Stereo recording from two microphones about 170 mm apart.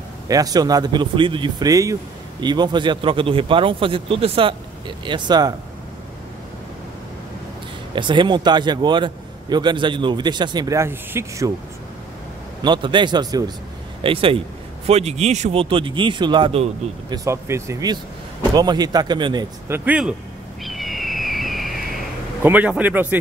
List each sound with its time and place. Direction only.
0.3 s a man's voice: 20° right (ahead or behind)
7.9 s a man's voice: 30° right (ahead or behind)
12.6 s a man's voice: 25° right (ahead or behind)
17.1 s a man's voice: 20° right (ahead or behind)
19.7 s speech: 10° right (ahead or behind)
20.6 s a sound: centre (ahead or behind)
22.4 s speech: 10° right (ahead or behind)